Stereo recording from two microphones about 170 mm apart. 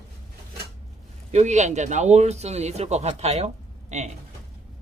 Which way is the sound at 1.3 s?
40° right (ahead or behind).